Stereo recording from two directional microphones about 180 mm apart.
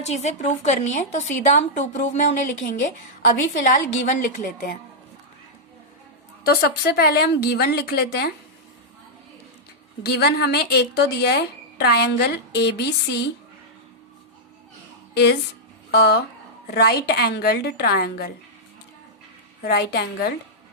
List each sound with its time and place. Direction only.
0.0 s a woman's voice: 40° left (ahead or behind)
6.4 s speech: 60° left (ahead or behind)
10.0 s speech: 65° left (ahead or behind)
15.1 s speech: 65° left (ahead or behind)
19.6 s speech: 60° left (ahead or behind)